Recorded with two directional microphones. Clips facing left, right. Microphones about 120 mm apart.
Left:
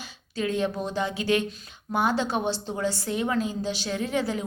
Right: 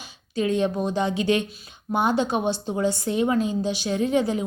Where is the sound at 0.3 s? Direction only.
20° right (ahead or behind).